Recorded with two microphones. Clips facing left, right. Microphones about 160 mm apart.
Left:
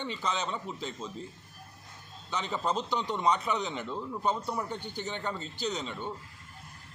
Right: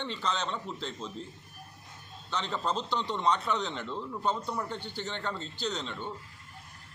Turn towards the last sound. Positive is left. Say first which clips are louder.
# left 1 dB
turn(degrees=10)  # may be behind; listen again after turning